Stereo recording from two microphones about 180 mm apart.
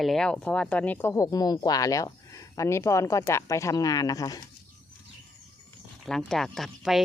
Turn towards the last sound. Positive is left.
turn(degrees=0)  # may be behind; listen again after turning